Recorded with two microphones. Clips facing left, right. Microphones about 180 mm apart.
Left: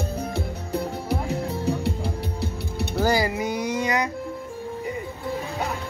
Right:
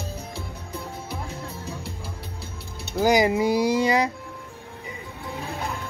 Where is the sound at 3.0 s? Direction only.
15° right (ahead or behind).